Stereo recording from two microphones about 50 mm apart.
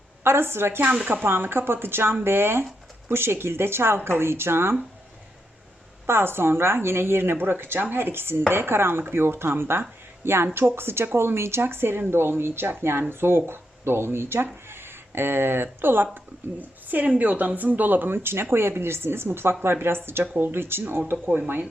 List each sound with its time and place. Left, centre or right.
0.3 s speech: right
6.1 s speech: right
16.1 s speech: right
21.2 s speech: right